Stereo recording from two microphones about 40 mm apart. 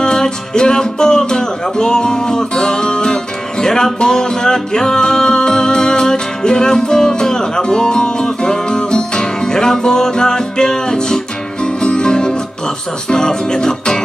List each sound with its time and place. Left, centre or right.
0.0 s music: centre